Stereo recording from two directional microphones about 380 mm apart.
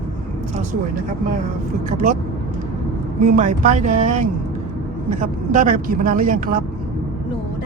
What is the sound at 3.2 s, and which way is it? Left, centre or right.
Speech, centre.